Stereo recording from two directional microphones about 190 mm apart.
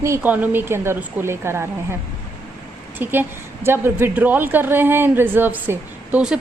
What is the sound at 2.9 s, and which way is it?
A woman's voice, 10° right (ahead or behind).